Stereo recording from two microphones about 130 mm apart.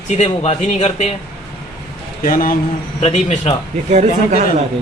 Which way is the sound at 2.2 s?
90° left.